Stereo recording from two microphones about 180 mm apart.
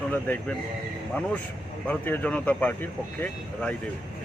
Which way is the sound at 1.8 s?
5° left (ahead or behind).